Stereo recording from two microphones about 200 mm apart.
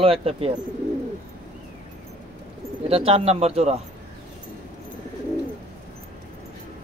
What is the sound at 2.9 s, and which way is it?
Speech, 30° right (ahead or behind).